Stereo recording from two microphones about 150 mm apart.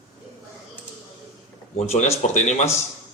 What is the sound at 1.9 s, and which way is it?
Speech, 45° left (ahead or behind).